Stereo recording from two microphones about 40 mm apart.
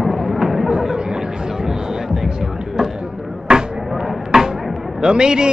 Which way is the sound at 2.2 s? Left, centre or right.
Centre.